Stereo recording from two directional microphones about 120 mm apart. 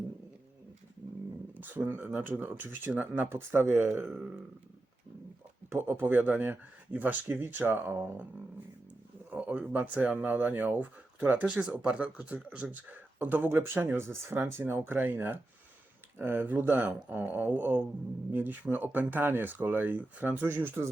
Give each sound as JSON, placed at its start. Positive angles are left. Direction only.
{"t": 1.5, "sound": "speech", "side_deg": -15}
{"t": 5.7, "sound": "speech", "side_deg": -15}
{"t": 9.3, "sound": "speech", "side_deg": -15}